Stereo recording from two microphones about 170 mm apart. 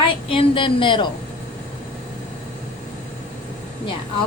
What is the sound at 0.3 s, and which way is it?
Speech, 30° left (ahead or behind).